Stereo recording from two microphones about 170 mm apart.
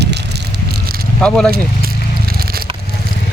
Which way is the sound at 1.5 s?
60° right (ahead or behind).